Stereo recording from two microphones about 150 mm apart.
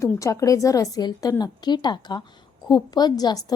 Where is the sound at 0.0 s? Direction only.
20° left (ahead or behind).